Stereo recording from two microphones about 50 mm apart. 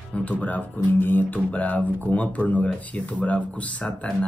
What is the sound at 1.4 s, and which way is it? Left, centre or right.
Speech, left.